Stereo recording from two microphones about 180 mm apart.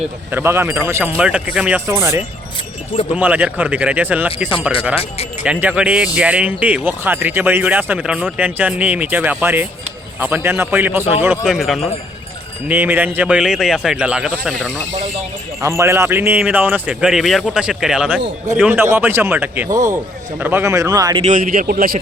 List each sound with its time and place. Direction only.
0.3 s speech: 15° right (ahead or behind)
5.4 s speech: 10° right (ahead or behind)
15.6 s speech: 15° right (ahead or behind)
21.2 s a man's voice: 45° right (ahead or behind)